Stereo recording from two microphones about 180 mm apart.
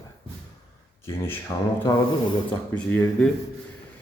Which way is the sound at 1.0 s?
15° left (ahead or behind).